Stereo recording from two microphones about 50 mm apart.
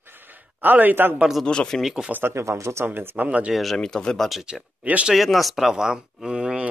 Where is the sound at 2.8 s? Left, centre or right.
Right.